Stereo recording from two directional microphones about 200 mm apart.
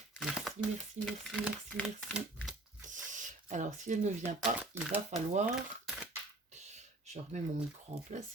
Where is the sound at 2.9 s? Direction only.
40° right (ahead or behind).